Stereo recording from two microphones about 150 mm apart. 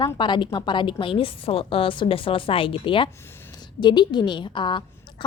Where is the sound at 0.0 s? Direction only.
30° left (ahead or behind).